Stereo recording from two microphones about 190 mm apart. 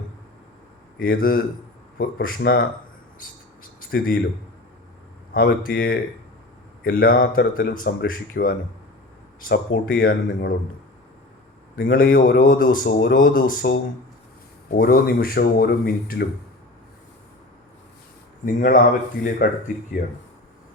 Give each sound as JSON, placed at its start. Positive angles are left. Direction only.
{"t": 0.9, "sound": "a man's voice", "side_deg": 50}
{"t": 3.2, "sound": "a sound", "side_deg": 50}
{"t": 5.3, "sound": "a man's voice", "side_deg": 50}
{"t": 11.8, "sound": "a man's voice", "side_deg": 50}
{"t": 14.8, "sound": "a man's voice", "side_deg": 50}
{"t": 18.4, "sound": "a man's voice", "side_deg": 50}